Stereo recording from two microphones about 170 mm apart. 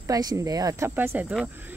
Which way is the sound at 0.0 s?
20° right (ahead or behind).